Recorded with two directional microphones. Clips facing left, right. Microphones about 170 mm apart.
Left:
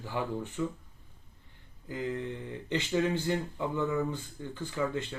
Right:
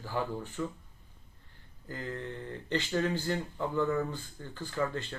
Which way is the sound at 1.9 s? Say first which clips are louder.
Left 4 dB; 15° left (ahead or behind).